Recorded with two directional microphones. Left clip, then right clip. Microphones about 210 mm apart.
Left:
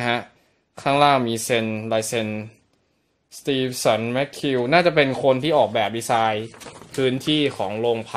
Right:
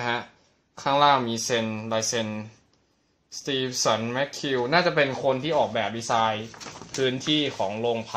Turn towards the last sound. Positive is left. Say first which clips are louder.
# left 4 dB
turn(degrees=45)  # may be behind; listen again after turning